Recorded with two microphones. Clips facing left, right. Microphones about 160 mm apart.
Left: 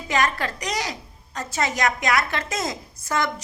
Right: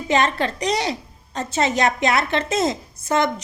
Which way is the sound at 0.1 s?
25° right (ahead or behind).